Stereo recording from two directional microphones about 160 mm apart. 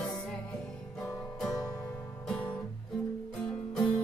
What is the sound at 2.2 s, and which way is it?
Guitar, 10° left (ahead or behind).